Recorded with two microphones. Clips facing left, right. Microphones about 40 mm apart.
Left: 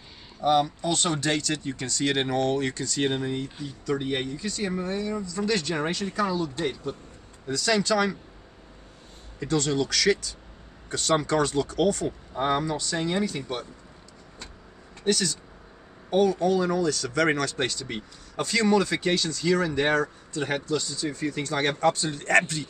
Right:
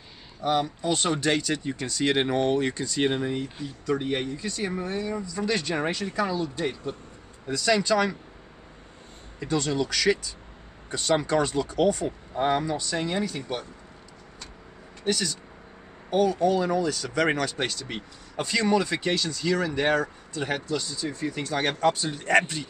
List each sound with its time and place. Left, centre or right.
0.4 s speech: centre
4.5 s speech: centre
9.4 s speech: centre
15.0 s speech: centre